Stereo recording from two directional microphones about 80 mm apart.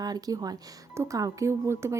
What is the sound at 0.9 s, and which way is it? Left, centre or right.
A woman's voice, right.